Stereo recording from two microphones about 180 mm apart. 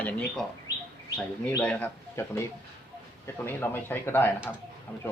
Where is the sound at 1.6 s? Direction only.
10° left (ahead or behind).